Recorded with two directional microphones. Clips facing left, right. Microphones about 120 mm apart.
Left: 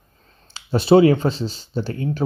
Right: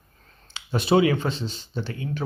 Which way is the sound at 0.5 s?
35° left (ahead or behind).